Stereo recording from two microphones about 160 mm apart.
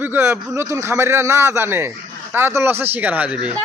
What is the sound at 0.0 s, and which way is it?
A man's voice, 15° right (ahead or behind).